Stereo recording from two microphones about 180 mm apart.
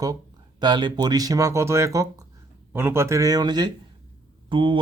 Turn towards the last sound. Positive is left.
turn(degrees=-30)  # may be behind; listen again after turning